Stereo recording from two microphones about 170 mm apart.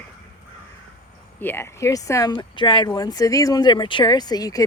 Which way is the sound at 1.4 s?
10° left (ahead or behind).